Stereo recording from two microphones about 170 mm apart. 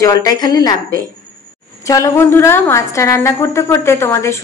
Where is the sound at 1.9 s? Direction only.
15° left (ahead or behind).